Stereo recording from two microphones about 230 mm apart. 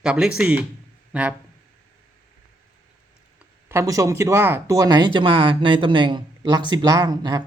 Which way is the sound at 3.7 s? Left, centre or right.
Centre.